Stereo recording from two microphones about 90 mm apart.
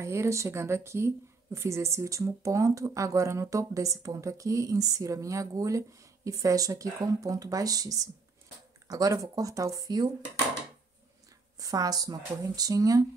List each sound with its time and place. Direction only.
0.0 s speech: 30° right (ahead or behind)
11.5 s speech: 40° right (ahead or behind)